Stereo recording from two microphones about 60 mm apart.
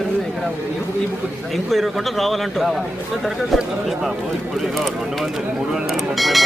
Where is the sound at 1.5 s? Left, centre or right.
Centre.